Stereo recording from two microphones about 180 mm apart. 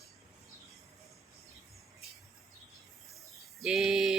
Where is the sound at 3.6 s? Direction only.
5° right (ahead or behind).